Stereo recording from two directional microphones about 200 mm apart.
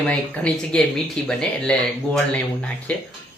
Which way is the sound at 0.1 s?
5° left (ahead or behind).